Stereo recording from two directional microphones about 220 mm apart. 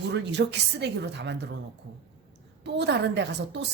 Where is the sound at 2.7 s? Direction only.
50° right (ahead or behind).